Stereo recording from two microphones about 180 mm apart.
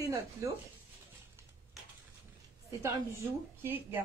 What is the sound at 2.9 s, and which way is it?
Speech, 15° right (ahead or behind).